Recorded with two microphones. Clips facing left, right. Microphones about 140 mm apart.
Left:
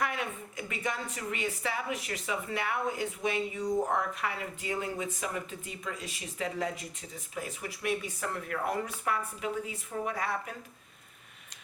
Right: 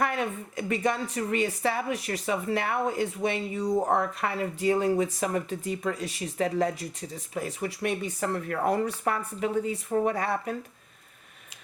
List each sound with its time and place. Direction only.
0.0 s a woman's voice: 40° right (ahead or behind)